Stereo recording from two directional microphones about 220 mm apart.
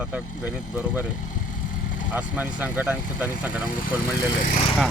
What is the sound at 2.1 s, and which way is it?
Speech, 5° right (ahead or behind).